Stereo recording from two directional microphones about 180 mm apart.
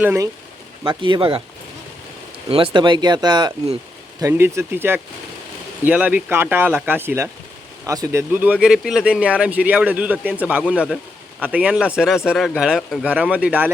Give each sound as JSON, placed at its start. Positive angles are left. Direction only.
{"t": 0.0, "sound": "speech", "side_deg": -10}
{"t": 0.9, "sound": "speech", "side_deg": -25}
{"t": 2.5, "sound": "a man's voice", "side_deg": -25}